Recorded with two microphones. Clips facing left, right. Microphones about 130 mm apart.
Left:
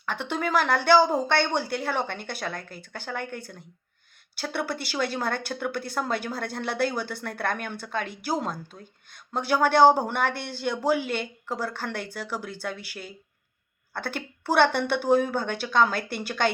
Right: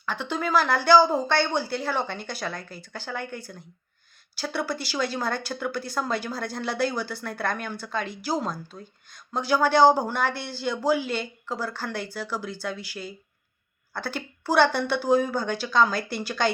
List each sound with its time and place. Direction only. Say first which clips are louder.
0.0 s a woman's voice: even; 65° left (ahead or behind)